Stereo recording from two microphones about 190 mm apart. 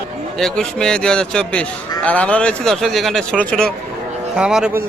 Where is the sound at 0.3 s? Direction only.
Centre (ahead or behind).